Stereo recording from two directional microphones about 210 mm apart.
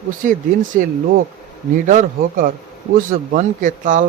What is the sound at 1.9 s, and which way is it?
Speech, 35° right (ahead or behind).